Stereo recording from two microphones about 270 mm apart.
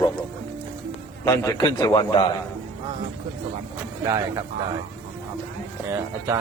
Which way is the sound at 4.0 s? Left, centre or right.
Centre.